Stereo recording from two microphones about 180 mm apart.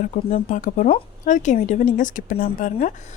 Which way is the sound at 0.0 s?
45° left (ahead or behind).